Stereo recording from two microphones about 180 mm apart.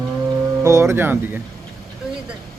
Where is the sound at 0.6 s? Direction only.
15° right (ahead or behind).